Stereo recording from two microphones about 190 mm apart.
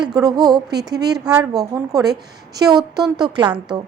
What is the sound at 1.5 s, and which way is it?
A woman's voice, 20° right (ahead or behind).